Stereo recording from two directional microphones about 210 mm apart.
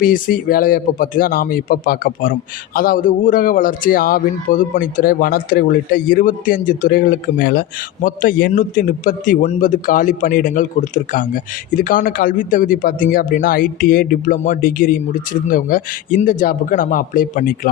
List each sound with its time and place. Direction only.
0.0 s a man's voice: 45° left (ahead or behind)